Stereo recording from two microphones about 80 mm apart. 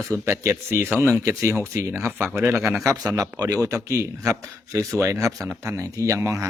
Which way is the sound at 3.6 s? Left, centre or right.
Right.